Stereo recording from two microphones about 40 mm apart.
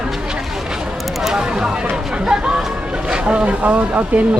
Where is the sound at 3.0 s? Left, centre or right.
Right.